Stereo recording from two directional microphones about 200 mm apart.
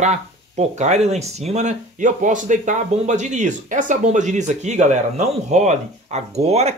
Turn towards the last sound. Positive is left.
turn(degrees=-30)  # may be behind; listen again after turning